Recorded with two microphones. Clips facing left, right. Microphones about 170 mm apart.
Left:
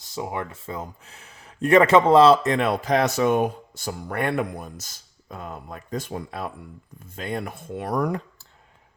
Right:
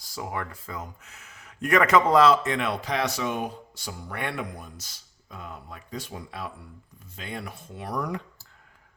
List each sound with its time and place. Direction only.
0.1 s speech: 20° left (ahead or behind); by 8.2 s 50° left (ahead or behind)